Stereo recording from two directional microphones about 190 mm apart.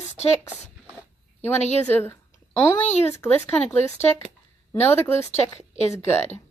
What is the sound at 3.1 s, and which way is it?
Speech, 15° left (ahead or behind).